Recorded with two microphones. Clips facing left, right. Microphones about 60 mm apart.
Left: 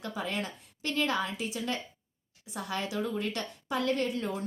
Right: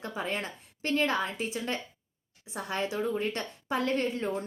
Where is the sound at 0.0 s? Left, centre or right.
Right.